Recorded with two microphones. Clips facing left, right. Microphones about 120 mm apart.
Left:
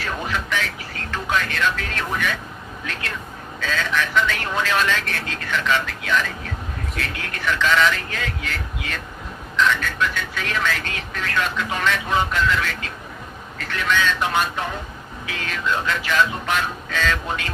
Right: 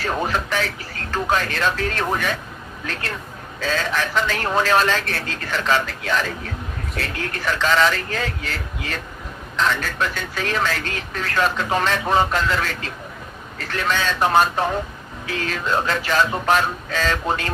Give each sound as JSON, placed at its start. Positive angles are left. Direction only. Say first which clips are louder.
{"t": 0.0, "sound": "a sound", "louder": "right 4 dB", "side_deg": -35}
{"t": 1.1, "sound": "speech", "louder": "right 3 dB", "side_deg": -35}
{"t": 3.6, "sound": "speech", "louder": "right 1 dB", "side_deg": -35}